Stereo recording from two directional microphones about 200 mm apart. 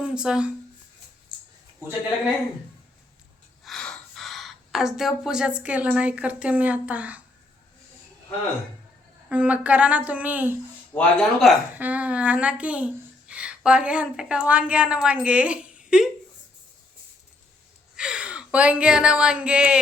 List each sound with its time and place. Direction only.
0.0 s speech: 5° right (ahead or behind)
1.3 s a sound: 25° right (ahead or behind)
3.6 s speech: centre (ahead or behind)
9.3 s a woman's voice: 5° right (ahead or behind)
10.9 s a woman's voice: centre (ahead or behind)
17.9 s a woman's voice: 5° right (ahead or behind)